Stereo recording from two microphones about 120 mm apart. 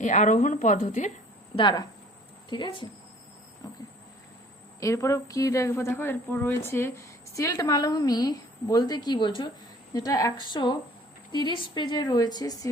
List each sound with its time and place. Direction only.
0.0 s speech: 90° left
1.5 s a woman's voice: 40° left (ahead or behind)
3.6 s a woman's voice: 30° left (ahead or behind)
9.9 s a woman's voice: 30° left (ahead or behind)
10.3 s a woman's voice: 40° left (ahead or behind)